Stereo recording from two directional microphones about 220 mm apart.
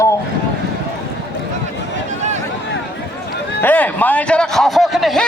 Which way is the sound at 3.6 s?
5° left (ahead or behind).